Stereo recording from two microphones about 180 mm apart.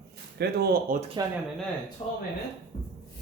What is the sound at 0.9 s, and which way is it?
Speech, 50° right (ahead or behind).